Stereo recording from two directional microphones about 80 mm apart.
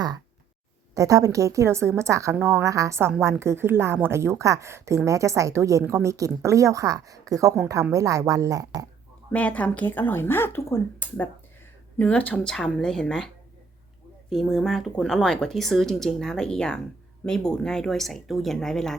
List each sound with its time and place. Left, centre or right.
0.9 s a woman's voice: right
9.3 s speech: centre
11.9 s speech: centre